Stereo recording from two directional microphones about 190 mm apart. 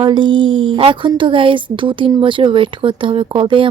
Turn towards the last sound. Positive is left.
turn(degrees=-25)  # may be behind; listen again after turning